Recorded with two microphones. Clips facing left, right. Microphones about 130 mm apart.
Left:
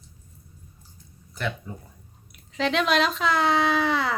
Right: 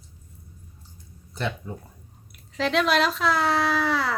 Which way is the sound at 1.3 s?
30° right (ahead or behind).